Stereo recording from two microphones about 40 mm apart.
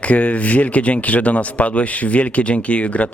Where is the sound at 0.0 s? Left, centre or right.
Left.